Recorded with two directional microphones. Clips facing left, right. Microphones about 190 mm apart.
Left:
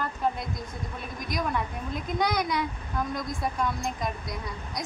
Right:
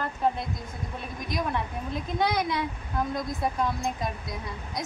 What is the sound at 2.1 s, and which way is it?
Speech, 25° right (ahead or behind).